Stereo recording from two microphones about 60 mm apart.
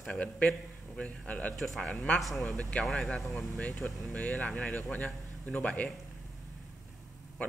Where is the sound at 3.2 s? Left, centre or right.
Centre.